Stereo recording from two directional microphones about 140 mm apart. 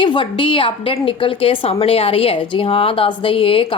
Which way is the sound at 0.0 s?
35° left (ahead or behind).